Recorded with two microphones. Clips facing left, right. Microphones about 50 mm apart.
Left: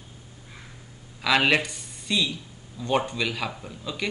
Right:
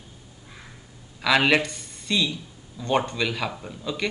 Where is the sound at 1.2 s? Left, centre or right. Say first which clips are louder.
Right 2 dB; centre.